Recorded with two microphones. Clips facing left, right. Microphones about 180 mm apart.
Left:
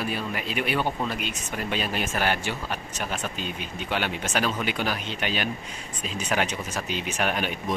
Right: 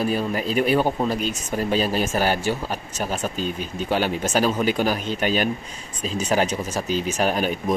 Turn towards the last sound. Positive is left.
turn(degrees=-40)  # may be behind; listen again after turning